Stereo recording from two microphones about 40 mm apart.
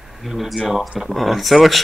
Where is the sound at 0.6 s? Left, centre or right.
Centre.